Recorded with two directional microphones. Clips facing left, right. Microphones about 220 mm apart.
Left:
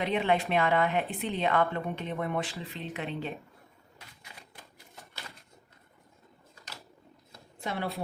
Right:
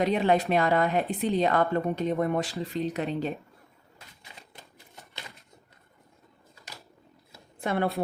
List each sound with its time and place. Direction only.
0.0 s speech: 40° right (ahead or behind)
7.6 s a woman's voice: 55° right (ahead or behind)